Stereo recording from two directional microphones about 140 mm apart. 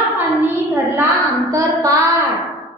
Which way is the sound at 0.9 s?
25° right (ahead or behind).